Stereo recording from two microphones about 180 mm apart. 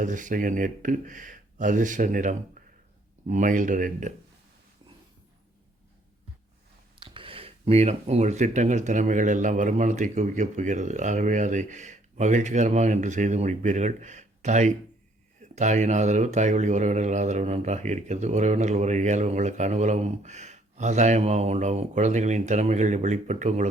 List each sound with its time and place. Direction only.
0.0 s speech: 45° right (ahead or behind)
7.0 s speech: 30° right (ahead or behind)